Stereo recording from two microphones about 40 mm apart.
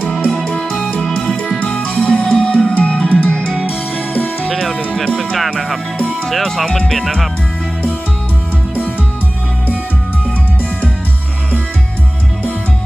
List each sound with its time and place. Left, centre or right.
0.3 s music: centre
3.4 s music: centre
3.9 s music: left
4.4 s music: centre
6.2 s speech: centre